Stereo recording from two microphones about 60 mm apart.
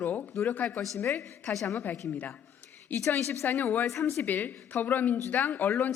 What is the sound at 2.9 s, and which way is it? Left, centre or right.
Speech, left.